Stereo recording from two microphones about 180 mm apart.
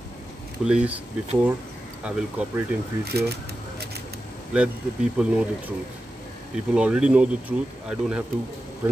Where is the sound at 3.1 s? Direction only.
65° right (ahead or behind).